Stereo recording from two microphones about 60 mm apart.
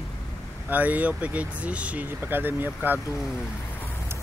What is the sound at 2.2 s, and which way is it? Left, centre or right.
Speech, right.